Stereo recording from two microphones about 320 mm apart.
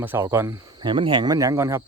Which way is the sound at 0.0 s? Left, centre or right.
Centre.